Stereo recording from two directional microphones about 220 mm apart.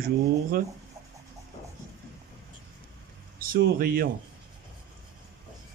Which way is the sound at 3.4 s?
40° right (ahead or behind).